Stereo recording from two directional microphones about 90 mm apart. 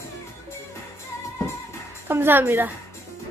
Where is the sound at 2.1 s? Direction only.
25° right (ahead or behind).